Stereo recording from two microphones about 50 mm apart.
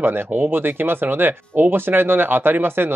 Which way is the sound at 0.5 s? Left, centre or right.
Right.